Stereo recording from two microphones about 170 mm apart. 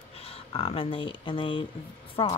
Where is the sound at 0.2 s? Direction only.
35° left (ahead or behind).